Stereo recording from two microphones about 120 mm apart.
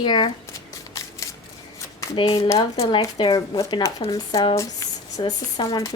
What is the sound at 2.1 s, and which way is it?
Speech, 45° left (ahead or behind).